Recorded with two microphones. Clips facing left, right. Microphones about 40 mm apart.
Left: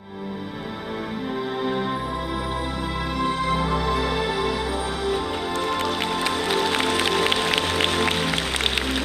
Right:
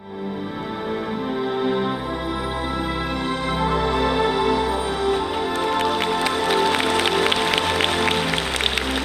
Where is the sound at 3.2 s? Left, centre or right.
Centre.